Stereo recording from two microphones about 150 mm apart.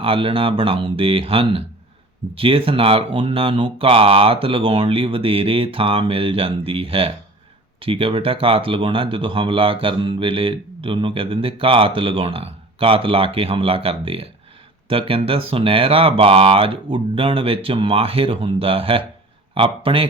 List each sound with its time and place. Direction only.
0.0 s speech: 35° right (ahead or behind)